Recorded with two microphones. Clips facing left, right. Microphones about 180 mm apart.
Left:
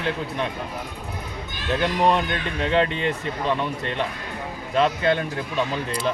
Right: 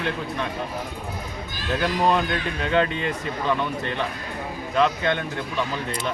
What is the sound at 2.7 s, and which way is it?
Speech, 30° left (ahead or behind).